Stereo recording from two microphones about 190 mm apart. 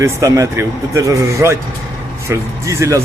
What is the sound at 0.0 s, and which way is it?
Speech, 15° right (ahead or behind).